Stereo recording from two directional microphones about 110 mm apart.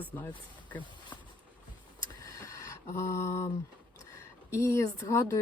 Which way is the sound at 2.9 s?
25° left (ahead or behind).